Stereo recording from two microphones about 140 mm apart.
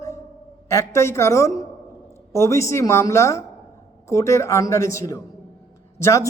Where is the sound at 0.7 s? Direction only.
20° left (ahead or behind).